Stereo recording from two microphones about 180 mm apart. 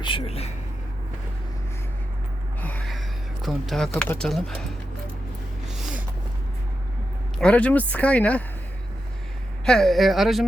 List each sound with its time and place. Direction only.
0.0 s speech: 30° left (ahead or behind)
2.6 s a sound: 10° left (ahead or behind)
3.4 s speech: centre (ahead or behind)
5.8 s a sound: 5° right (ahead or behind)
7.3 s speech: 5° left (ahead or behind)
9.6 s speech: centre (ahead or behind)